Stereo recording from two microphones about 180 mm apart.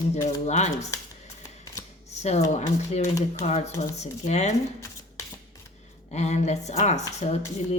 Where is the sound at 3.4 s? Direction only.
35° left (ahead or behind).